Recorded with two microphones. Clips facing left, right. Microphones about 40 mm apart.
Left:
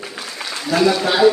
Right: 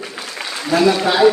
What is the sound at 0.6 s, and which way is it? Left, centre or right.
Speech, centre.